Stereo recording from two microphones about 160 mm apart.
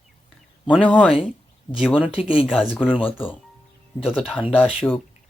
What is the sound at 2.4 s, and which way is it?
Speech, 5° right (ahead or behind).